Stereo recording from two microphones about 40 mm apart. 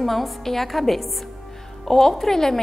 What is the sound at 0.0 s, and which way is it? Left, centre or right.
A woman's voice, centre.